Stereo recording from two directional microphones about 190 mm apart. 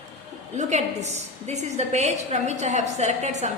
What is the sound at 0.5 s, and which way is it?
A woman's voice, 35° right (ahead or behind).